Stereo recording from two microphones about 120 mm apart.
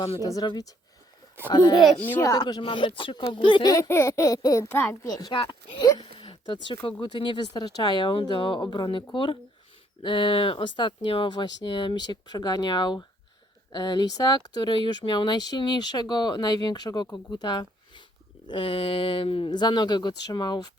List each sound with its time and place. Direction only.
0.2 s speech: 30° left (ahead or behind)
5.0 s speech: 35° left (ahead or behind)